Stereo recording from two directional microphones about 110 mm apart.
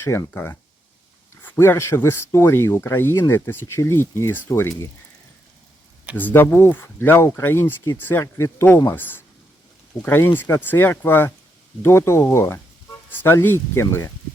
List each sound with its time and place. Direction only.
0.0 s speech: 25° left (ahead or behind)
6.1 s speech: 20° left (ahead or behind)